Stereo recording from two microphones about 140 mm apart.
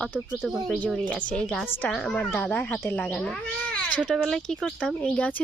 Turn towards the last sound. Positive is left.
turn(degrees=10)  # may be behind; listen again after turning